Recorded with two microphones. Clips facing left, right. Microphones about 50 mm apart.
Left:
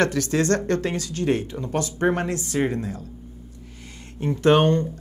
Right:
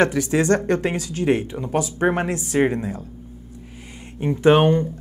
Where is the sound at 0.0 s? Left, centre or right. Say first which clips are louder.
Right 3 dB; centre.